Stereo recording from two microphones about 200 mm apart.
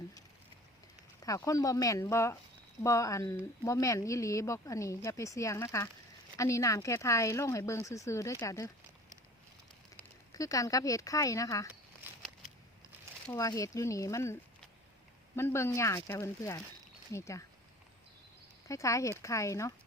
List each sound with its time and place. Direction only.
1.2 s speech: 15° left (ahead or behind)
10.0 s speech: 15° left (ahead or behind)
13.2 s speech: 15° left (ahead or behind)
15.4 s speech: 15° left (ahead or behind)
18.7 s speech: 15° left (ahead or behind)